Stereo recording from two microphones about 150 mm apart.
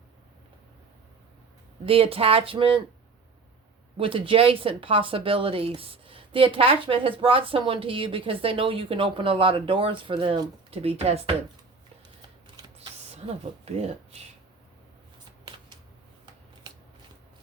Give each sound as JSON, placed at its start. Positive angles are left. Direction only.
{"t": 1.8, "sound": "speech", "side_deg": -40}
{"t": 3.9, "sound": "speech", "side_deg": -35}
{"t": 13.7, "sound": "speech", "side_deg": -45}
{"t": 15.2, "sound": "shuffling cards", "side_deg": -30}